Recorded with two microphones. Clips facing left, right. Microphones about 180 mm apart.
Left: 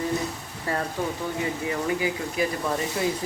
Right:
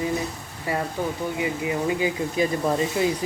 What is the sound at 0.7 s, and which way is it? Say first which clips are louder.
Speech: right 1 dB; 15° right (ahead or behind).